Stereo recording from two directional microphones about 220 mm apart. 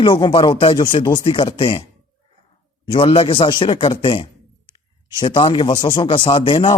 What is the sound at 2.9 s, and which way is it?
Speech, 25° left (ahead or behind).